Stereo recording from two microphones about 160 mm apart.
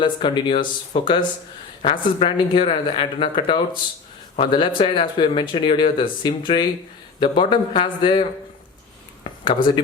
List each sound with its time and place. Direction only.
0.0 s speech: 30° left (ahead or behind)
9.4 s speech: 30° left (ahead or behind)